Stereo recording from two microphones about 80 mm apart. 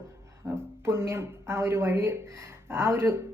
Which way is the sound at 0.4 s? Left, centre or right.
Right.